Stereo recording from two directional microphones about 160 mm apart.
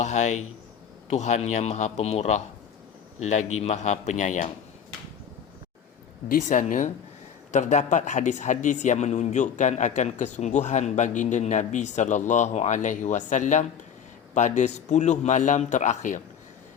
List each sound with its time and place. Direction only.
0.0 s speech: 45° left (ahead or behind)
6.2 s speech: 60° left (ahead or behind)